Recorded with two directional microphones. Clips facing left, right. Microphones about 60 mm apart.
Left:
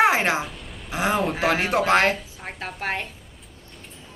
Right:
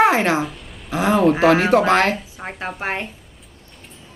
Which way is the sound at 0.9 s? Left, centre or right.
Centre.